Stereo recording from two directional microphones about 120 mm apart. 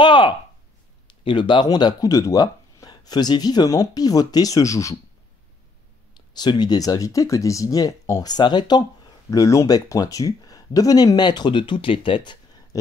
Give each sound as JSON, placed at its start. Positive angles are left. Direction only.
{"t": 0.0, "sound": "a sound", "side_deg": 40}
{"t": 1.2, "sound": "speech", "side_deg": 40}
{"t": 6.1, "sound": "speech", "side_deg": 40}